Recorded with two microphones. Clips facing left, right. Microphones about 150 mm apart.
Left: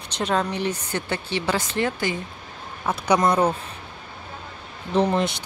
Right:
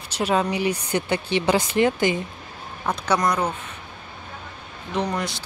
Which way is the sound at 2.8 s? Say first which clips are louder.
Left 2 dB; 10° left (ahead or behind).